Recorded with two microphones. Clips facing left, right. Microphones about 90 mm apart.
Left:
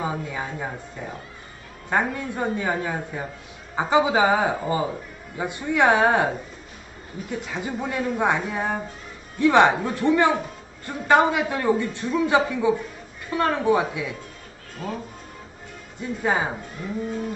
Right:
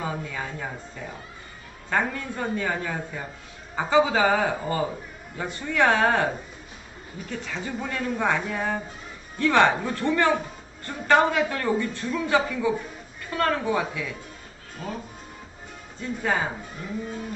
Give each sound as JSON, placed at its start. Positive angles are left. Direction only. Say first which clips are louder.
{"t": 0.0, "sound": "a man's voice", "louder": "left 3 dB", "side_deg": 20}
{"t": 16.0, "sound": "speech", "louder": "left 2 dB", "side_deg": 15}